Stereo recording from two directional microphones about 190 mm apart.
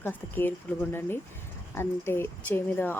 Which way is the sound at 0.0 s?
10° left (ahead or behind).